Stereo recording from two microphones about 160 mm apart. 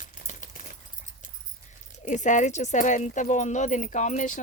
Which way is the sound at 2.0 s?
50° left (ahead or behind).